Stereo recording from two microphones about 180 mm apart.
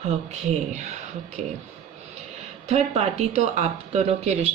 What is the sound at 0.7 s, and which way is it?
Speech, 40° right (ahead or behind).